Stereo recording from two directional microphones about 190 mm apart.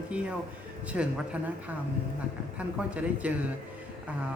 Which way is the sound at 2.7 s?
5° right (ahead or behind).